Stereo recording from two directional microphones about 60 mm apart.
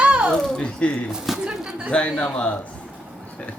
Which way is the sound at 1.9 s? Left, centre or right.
Centre.